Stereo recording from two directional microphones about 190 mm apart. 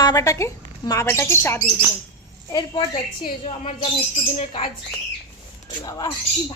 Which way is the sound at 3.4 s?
30° left (ahead or behind).